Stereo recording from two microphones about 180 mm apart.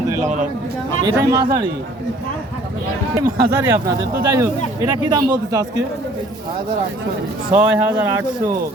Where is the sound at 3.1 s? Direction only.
15° right (ahead or behind).